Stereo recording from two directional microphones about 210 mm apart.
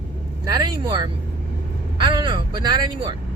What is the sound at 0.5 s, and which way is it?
Speech, 20° right (ahead or behind).